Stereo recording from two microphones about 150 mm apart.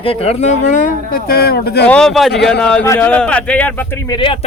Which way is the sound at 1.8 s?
5° left (ahead or behind).